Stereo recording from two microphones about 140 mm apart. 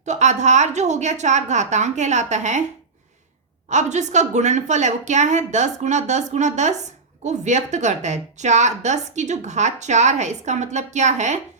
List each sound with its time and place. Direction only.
0.0 s a woman's voice: 55° right (ahead or behind)
3.7 s a woman's voice: 55° right (ahead or behind)